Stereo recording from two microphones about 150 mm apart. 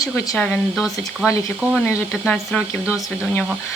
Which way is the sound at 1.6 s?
15° right (ahead or behind).